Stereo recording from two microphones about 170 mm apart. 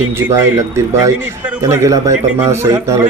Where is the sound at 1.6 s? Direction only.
20° right (ahead or behind).